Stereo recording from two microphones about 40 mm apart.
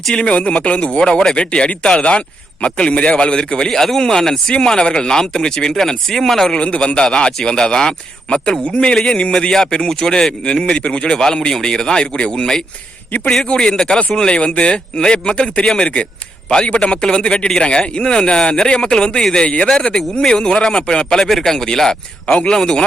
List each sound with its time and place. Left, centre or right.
0.1 s speech: left
3.8 s speech: centre
6.7 s speech: left
21.2 s speech: centre
22.3 s speech: left
22.5 s speech: centre